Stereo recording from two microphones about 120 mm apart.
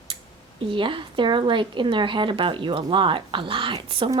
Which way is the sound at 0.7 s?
45° right (ahead or behind).